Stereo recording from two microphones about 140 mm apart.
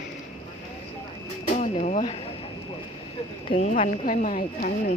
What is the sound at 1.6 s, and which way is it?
Speech, 70° left (ahead or behind).